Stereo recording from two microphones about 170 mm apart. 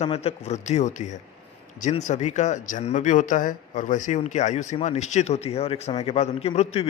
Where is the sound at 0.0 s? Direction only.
35° left (ahead or behind).